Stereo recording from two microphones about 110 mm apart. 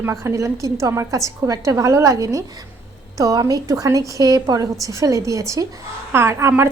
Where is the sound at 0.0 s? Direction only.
25° right (ahead or behind).